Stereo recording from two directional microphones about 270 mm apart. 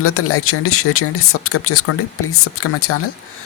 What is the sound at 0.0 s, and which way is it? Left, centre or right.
Speech, left.